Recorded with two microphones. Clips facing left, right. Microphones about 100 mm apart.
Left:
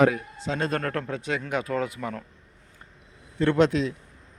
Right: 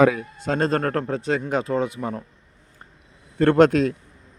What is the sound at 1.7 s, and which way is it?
Speech, 25° right (ahead or behind).